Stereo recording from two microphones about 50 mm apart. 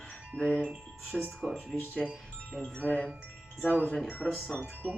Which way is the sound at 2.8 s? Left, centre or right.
Left.